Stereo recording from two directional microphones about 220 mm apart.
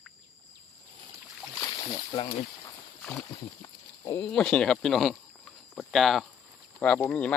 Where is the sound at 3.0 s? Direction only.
Centre (ahead or behind).